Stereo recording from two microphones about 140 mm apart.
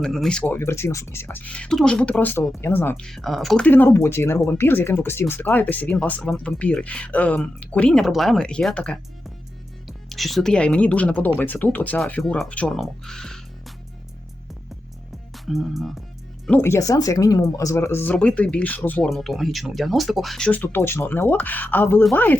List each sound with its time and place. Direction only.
0.0 s speech: 5° left (ahead or behind)
3.1 s speech: centre (ahead or behind)
3.7 s speech: 15° left (ahead or behind)
15.4 s speech: centre (ahead or behind)
16.5 s speech: 15° left (ahead or behind)
19.0 s speech: centre (ahead or behind)